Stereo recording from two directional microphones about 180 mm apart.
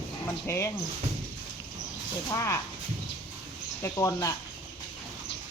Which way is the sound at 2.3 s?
15° left (ahead or behind).